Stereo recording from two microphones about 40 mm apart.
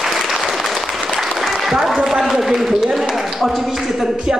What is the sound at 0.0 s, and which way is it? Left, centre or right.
Applause, centre.